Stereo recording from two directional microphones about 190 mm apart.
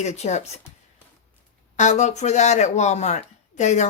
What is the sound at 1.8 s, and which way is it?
Speech, 40° left (ahead or behind).